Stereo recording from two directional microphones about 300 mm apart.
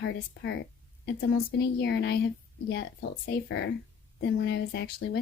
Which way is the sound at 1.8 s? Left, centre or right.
Left.